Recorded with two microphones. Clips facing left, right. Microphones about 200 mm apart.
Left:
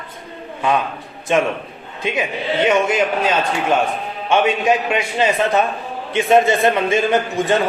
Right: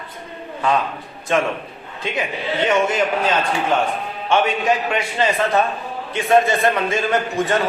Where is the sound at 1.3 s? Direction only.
20° left (ahead or behind).